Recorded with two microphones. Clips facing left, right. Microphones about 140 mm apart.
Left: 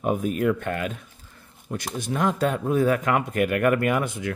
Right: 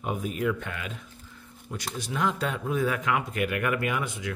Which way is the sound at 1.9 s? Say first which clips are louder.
Left 5 dB; 50° left (ahead or behind).